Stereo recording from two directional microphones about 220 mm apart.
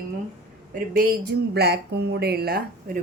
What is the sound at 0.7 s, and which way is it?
Speech, 40° right (ahead or behind).